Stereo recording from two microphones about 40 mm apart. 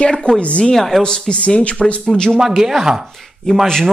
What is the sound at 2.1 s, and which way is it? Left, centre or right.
Speech, centre.